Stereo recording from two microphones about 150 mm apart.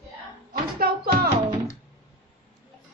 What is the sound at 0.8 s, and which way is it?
Music, 90° right.